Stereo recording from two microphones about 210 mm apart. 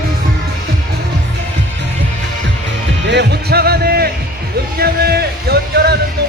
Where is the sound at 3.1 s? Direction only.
55° right (ahead or behind).